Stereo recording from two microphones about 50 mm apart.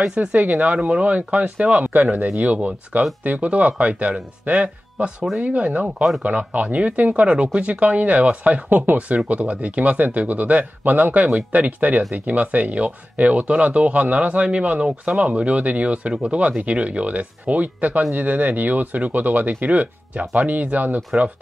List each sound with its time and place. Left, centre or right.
0.0 s speech: right